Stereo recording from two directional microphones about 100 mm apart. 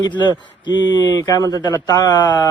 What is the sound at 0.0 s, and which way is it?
A man's voice, 45° left (ahead or behind).